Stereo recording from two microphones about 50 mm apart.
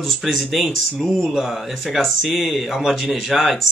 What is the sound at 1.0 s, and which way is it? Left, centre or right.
Speech, centre.